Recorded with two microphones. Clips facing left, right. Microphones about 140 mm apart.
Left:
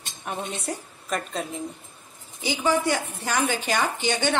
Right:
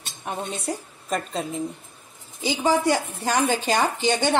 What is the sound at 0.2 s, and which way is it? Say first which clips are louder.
A woman's voice: right 2 dB; 25° right (ahead or behind).